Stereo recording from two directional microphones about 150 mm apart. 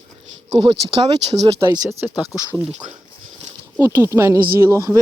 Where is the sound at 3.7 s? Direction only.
15° right (ahead or behind).